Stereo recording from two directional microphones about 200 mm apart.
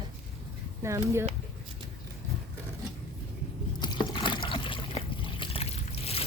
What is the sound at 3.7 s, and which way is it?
Liquid, 20° left (ahead or behind).